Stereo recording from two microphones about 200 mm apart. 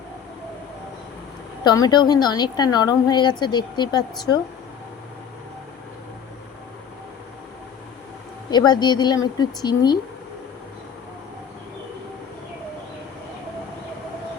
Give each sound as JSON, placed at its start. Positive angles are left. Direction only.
{"t": 1.6, "sound": "a woman's voice", "side_deg": 20}
{"t": 8.4, "sound": "a woman's voice", "side_deg": 20}